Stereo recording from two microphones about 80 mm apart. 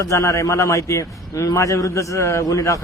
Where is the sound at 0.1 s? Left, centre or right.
Left.